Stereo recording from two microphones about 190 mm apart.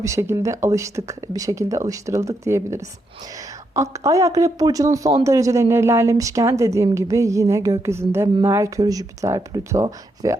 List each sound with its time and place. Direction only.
0.0 s speech: 15° right (ahead or behind)